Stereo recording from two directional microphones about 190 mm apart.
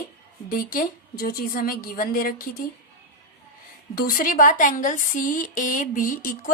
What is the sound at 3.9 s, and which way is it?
A woman's voice, 50° left (ahead or behind).